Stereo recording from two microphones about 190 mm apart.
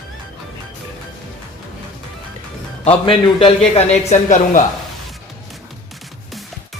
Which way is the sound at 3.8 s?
40° left (ahead or behind).